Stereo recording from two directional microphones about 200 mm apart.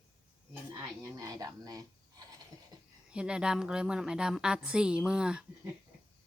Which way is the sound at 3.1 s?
5° right (ahead or behind).